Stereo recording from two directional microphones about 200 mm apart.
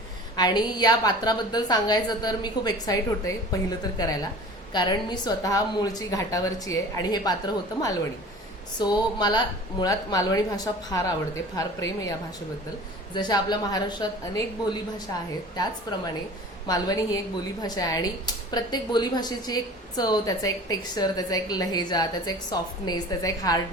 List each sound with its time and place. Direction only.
0.3 s a woman's voice: 20° left (ahead or behind)
13.1 s a woman's voice: 20° left (ahead or behind)